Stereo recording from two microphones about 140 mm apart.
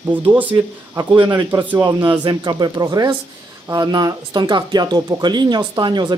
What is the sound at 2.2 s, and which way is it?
Speech, 30° right (ahead or behind).